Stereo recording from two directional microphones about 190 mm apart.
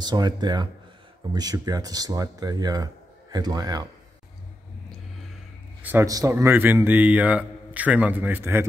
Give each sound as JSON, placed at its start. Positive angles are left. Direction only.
{"t": 0.0, "sound": "speech", "side_deg": -20}
{"t": 5.8, "sound": "a man's voice", "side_deg": -10}